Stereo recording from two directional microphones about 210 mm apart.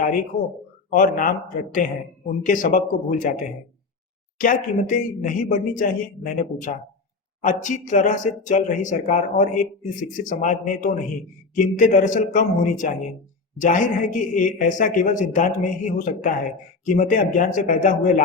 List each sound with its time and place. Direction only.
0.0 s speech: 40° left (ahead or behind)